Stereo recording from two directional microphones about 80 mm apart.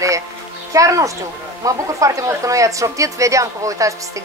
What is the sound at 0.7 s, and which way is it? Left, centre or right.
Speech, right.